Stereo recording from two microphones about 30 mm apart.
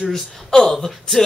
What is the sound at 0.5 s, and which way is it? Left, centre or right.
Speech, left.